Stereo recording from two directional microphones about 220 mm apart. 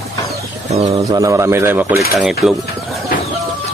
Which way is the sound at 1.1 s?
15° right (ahead or behind).